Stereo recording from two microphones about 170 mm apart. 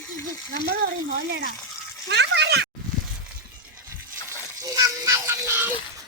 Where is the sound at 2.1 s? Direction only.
85° right.